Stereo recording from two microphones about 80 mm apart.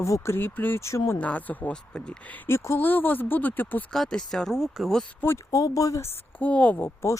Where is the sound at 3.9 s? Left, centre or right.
Centre.